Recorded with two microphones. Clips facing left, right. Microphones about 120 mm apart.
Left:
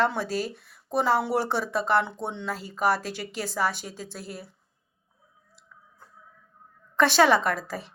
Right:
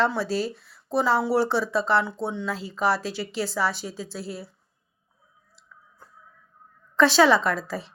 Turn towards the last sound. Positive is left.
turn(degrees=50)  # may be behind; listen again after turning